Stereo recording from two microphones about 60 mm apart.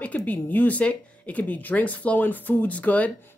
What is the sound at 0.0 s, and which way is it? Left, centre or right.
Speech, left.